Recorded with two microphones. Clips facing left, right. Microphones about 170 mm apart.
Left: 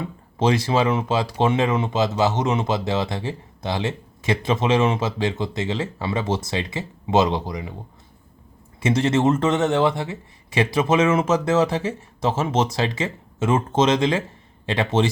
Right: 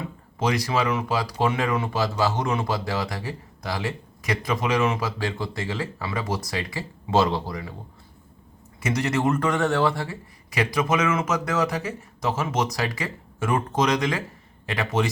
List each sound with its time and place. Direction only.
0.0 s speech: 30° left (ahead or behind)
8.8 s speech: 25° left (ahead or behind)